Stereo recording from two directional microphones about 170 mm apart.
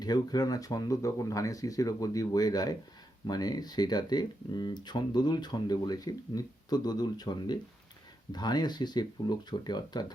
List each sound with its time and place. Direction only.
0.0 s speech: 25° left (ahead or behind)